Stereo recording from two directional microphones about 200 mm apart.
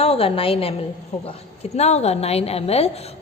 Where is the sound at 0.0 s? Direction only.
30° left (ahead or behind).